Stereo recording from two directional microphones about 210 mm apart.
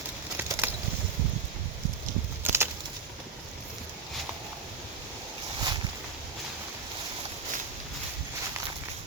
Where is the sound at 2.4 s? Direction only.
10° right (ahead or behind).